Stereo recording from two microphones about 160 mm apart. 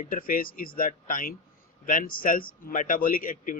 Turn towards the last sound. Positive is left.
turn(degrees=55)  # may be behind; listen again after turning